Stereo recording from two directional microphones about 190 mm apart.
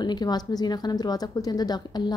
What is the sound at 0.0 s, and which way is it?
Speech, 20° left (ahead or behind).